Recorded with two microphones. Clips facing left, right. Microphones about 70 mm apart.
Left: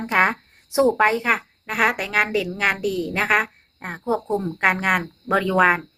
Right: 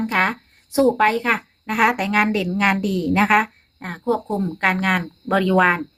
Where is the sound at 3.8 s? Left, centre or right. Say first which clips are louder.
Right 2 dB; centre.